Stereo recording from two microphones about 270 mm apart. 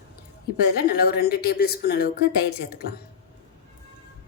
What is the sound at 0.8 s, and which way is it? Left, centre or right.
A woman's voice, left.